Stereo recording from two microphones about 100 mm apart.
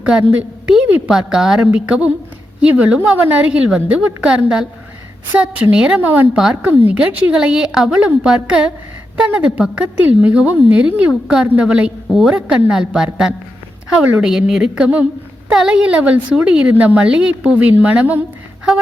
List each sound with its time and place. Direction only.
0.0 s a woman's voice: 10° right (ahead or behind)
6.3 s a woman's voice: 5° right (ahead or behind)